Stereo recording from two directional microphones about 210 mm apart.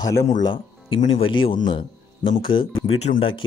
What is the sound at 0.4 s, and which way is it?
A man's voice, 25° left (ahead or behind).